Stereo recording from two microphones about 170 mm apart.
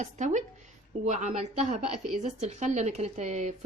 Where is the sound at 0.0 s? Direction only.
45° right (ahead or behind).